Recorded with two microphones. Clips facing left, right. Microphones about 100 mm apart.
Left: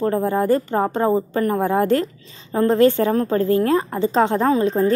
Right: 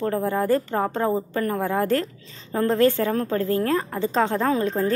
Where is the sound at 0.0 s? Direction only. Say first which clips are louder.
Left 4 dB; 20° left (ahead or behind).